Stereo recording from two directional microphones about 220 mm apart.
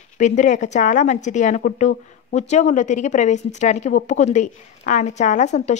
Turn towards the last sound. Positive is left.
turn(degrees=30)  # may be behind; listen again after turning